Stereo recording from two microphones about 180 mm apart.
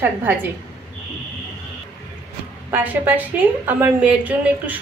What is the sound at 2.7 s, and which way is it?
A woman's voice, 10° right (ahead or behind).